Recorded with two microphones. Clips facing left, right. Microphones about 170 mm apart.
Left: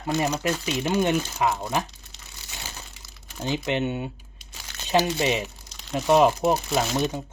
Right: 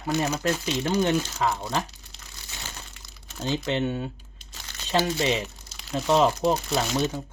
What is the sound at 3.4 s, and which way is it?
Speech, 15° left (ahead or behind).